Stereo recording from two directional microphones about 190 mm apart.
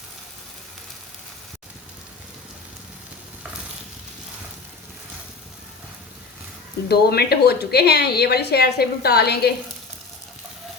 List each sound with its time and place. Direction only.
6.8 s speech: 55° left (ahead or behind)